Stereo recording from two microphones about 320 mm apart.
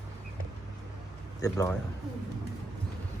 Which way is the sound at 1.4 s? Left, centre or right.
Centre.